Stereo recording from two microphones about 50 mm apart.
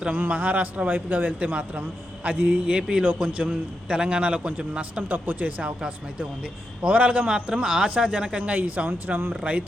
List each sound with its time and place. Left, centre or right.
0.1 s speech: right
3.0 s a man's voice: right
6.8 s a man's voice: right
9.0 s speech: right